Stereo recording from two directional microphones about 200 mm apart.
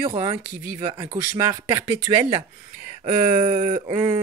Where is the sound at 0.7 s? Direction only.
20° right (ahead or behind).